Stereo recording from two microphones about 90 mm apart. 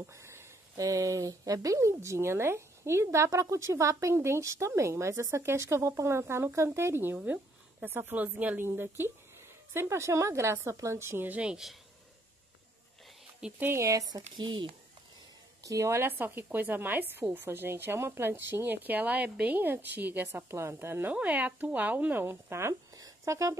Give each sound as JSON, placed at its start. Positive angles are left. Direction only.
{"t": 0.0, "sound": "speech", "side_deg": -30}
{"t": 13.6, "sound": "speech", "side_deg": -25}
{"t": 13.8, "sound": "speech", "side_deg": -40}
{"t": 15.6, "sound": "speech", "side_deg": -35}
{"t": 21.1, "sound": "speech", "side_deg": -15}
{"t": 22.9, "sound": "a sound", "side_deg": -40}